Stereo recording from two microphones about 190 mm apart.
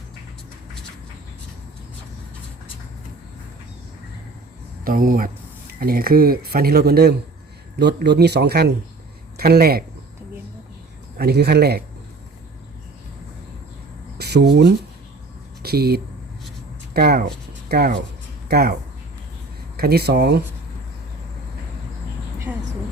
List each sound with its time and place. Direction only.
4.8 s a man's voice: 50° right (ahead or behind)
11.2 s a man's voice: 55° right (ahead or behind)
14.2 s a man's voice: 60° right (ahead or behind)